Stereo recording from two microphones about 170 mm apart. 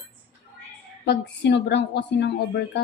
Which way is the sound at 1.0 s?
85° left.